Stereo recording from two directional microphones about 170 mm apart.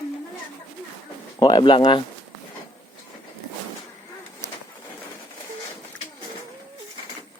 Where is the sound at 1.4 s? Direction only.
25° left (ahead or behind).